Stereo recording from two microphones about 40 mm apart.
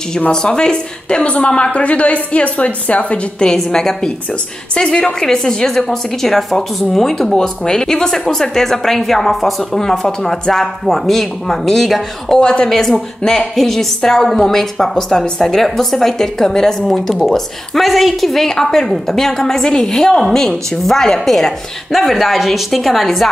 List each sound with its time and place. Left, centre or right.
0.3 s a woman's voice: centre; by 3.2 s left
3.3 s a woman's voice: centre
12.4 s a woman's voice: centre
12.6 s a woman's voice: centre